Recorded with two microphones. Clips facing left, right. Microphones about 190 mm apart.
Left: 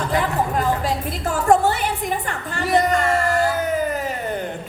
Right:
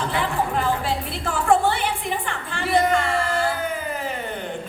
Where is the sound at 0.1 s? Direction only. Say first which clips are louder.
Left 3 dB; 40° left (ahead or behind).